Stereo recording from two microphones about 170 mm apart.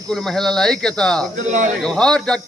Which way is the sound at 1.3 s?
45° right (ahead or behind).